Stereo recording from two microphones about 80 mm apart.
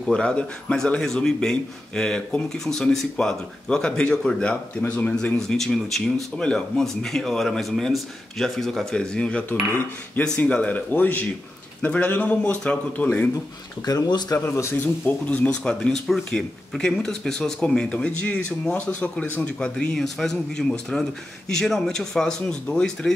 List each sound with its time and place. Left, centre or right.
0.0 s speech: centre
14.3 s speech: left
15.0 s speech: centre
15.7 s speech: centre